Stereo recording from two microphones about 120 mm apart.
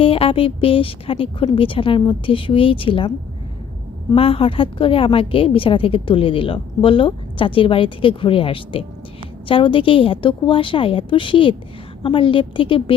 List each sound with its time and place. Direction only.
0.0 s a woman's voice: 50° left (ahead or behind)
4.1 s a woman's voice: 50° left (ahead or behind)